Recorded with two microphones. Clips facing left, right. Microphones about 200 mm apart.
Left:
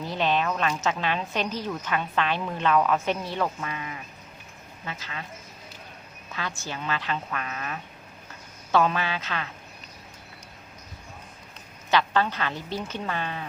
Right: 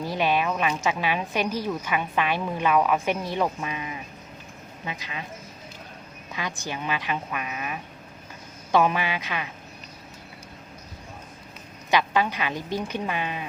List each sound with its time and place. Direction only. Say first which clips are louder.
0.0 s a woman's voice: right 1 dB; 10° right (ahead or behind)
6.6 s a woman's voice: right 2 dB; 15° right (ahead or behind)
11.9 s a woman's voice: right 1 dB; 15° right (ahead or behind)